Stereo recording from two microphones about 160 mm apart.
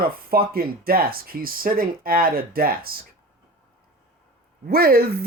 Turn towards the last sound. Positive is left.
turn(degrees=-75)  # may be behind; listen again after turning